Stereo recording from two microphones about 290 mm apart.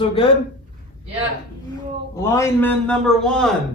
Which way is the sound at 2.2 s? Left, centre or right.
Centre.